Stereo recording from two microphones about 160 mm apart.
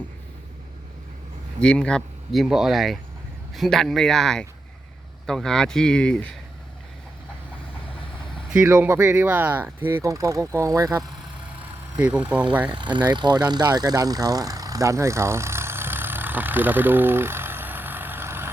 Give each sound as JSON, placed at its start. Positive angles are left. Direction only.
{"t": 1.6, "sound": "speech", "side_deg": 5}
{"t": 8.6, "sound": "speech", "side_deg": -15}
{"t": 12.7, "sound": "speech", "side_deg": -30}
{"t": 13.5, "sound": "vehicle", "side_deg": -25}